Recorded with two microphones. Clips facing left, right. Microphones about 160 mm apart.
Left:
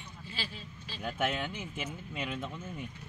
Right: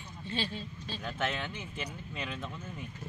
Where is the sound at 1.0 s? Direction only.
10° left (ahead or behind).